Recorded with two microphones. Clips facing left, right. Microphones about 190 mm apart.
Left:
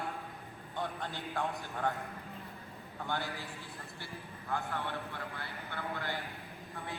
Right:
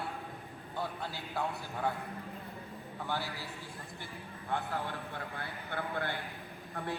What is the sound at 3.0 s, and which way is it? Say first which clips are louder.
Speech: even; 5° right (ahead or behind).